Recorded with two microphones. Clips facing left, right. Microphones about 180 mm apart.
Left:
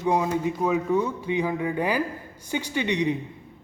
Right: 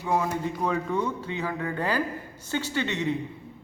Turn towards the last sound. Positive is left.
turn(degrees=15)  # may be behind; listen again after turning